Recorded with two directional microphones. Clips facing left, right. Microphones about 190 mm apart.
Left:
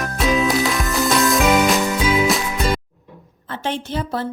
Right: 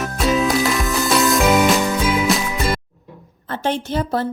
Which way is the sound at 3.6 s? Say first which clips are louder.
Right 3 dB; 40° right (ahead or behind).